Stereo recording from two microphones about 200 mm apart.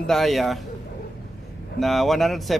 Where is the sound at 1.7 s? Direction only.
Centre (ahead or behind).